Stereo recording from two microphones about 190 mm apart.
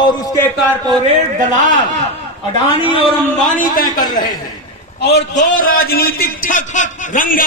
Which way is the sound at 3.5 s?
50° left (ahead or behind).